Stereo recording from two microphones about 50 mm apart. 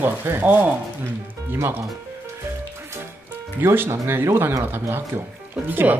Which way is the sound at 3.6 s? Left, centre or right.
Right.